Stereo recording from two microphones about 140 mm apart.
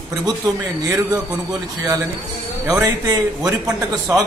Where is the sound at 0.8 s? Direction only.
25° right (ahead or behind).